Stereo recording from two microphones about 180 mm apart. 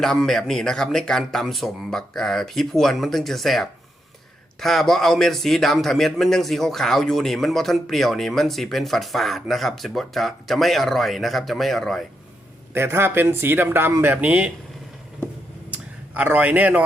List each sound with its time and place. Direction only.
0.0 s a man's voice: centre (ahead or behind)
12.7 s speech: 15° right (ahead or behind)
15.7 s a sound: 10° right (ahead or behind)